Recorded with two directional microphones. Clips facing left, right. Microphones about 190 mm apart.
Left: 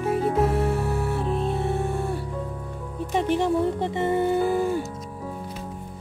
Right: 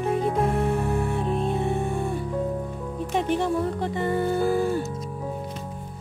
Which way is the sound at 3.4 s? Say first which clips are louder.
Left 2 dB; 20° left (ahead or behind).